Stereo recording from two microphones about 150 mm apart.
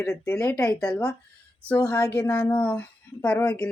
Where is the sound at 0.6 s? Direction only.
5° left (ahead or behind).